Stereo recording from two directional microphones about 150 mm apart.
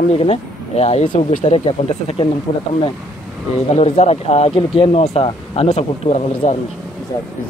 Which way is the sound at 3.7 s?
45° left (ahead or behind).